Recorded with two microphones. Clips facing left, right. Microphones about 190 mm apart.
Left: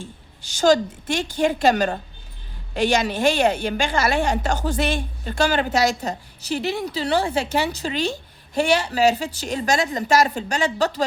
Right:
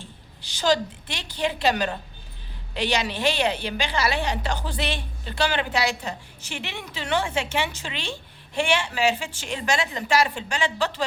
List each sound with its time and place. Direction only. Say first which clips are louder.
0.0 s a woman's voice: left 6 dB; 45° left (ahead or behind)